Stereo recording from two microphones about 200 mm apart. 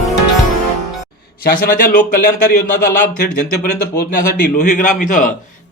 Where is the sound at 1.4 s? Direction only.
50° left (ahead or behind).